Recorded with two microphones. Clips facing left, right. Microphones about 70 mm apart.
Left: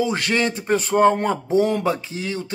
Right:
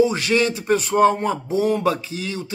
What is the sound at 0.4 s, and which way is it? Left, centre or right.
A man's voice, left.